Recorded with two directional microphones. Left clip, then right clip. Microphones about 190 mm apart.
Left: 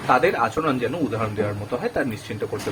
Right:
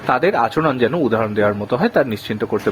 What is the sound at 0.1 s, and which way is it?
Speech, 50° right (ahead or behind).